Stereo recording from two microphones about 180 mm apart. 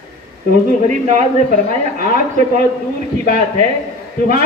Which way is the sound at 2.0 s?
45° right (ahead or behind).